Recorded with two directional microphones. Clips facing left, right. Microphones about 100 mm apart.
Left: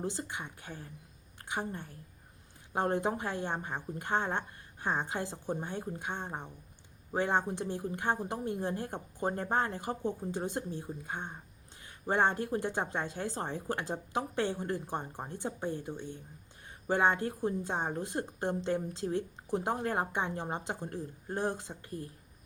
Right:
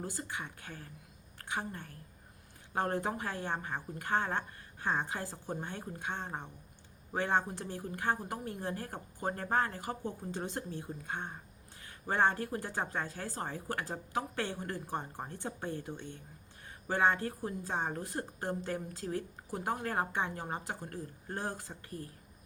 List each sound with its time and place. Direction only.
0.0 s a woman's voice: 25° left (ahead or behind)